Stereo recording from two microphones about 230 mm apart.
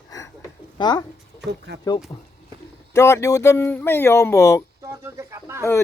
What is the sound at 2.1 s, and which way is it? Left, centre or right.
Speech, centre.